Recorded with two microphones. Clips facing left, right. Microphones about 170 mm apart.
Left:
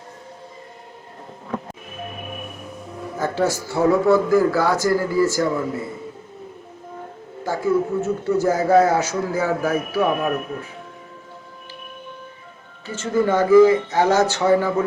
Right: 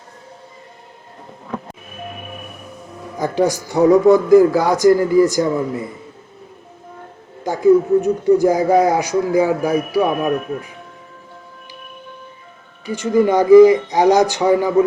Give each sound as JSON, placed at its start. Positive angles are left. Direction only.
{"t": 3.2, "sound": "speech", "side_deg": -15}
{"t": 7.4, "sound": "speech", "side_deg": -15}
{"t": 12.8, "sound": "speech", "side_deg": -15}